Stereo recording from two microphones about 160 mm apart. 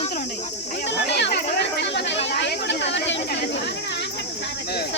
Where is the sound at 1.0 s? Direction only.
90° left.